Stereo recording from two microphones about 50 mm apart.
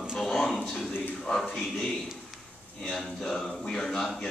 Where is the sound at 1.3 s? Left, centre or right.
Left.